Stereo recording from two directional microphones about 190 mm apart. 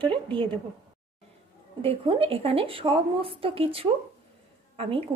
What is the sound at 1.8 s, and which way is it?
Speech, 30° right (ahead or behind).